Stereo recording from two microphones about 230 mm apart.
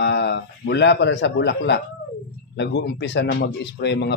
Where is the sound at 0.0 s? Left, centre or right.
Left.